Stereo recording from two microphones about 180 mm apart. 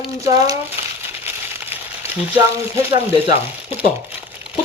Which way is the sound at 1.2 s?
10° right (ahead or behind).